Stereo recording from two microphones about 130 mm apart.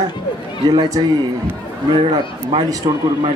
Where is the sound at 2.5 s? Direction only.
35° right (ahead or behind).